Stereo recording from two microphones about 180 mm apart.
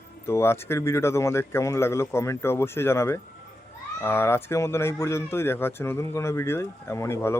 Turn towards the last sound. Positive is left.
turn(degrees=15)  # may be behind; listen again after turning